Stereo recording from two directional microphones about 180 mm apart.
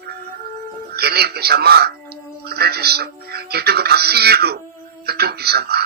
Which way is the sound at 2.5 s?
60° right (ahead or behind).